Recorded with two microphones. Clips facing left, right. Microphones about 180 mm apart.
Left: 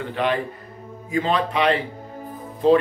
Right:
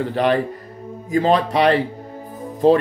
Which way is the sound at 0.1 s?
40° right (ahead or behind).